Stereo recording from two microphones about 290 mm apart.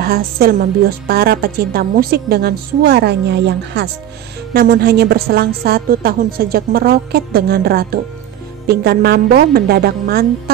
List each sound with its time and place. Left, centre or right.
0.0 s a woman's voice: right